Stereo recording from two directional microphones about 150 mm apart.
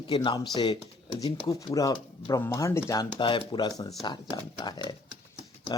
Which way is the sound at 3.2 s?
35° left (ahead or behind).